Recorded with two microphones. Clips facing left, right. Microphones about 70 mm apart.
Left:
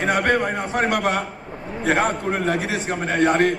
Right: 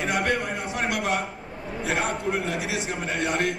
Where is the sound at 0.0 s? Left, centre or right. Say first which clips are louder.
Left 6 dB; left.